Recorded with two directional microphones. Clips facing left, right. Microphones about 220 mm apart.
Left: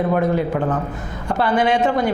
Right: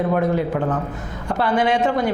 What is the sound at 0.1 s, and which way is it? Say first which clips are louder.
A man's voice: left 1 dB; 25° left (ahead or behind).